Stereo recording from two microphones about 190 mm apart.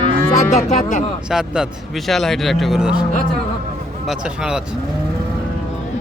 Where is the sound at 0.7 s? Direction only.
40° left (ahead or behind).